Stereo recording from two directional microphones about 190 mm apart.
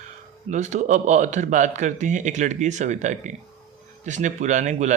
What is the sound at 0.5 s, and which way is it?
Speech, 40° right (ahead or behind).